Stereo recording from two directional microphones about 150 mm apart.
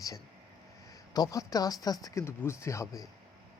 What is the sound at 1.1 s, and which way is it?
Speech, 25° left (ahead or behind).